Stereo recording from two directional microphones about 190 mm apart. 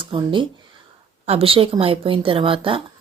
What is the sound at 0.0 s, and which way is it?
Speech, 25° right (ahead or behind).